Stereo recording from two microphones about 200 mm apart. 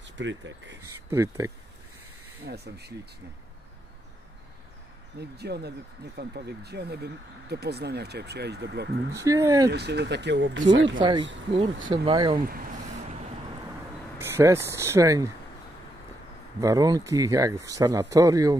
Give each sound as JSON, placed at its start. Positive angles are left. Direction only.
{"t": 0.0, "sound": "speech", "side_deg": -65}
{"t": 1.1, "sound": "speech", "side_deg": -15}
{"t": 2.4, "sound": "speech", "side_deg": -55}
{"t": 5.2, "sound": "speech", "side_deg": -55}
{"t": 9.1, "sound": "speech", "side_deg": -15}
{"t": 9.7, "sound": "speech", "side_deg": -55}
{"t": 11.0, "sound": "speech", "side_deg": -20}
{"t": 11.5, "sound": "speech", "side_deg": -35}
{"t": 12.4, "sound": "speech", "side_deg": -45}
{"t": 14.1, "sound": "speech", "side_deg": -10}
{"t": 16.6, "sound": "speech", "side_deg": -20}